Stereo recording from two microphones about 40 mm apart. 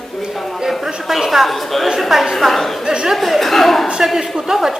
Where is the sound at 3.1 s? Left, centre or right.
Centre.